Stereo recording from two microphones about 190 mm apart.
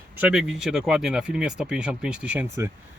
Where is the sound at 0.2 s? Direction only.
5° right (ahead or behind).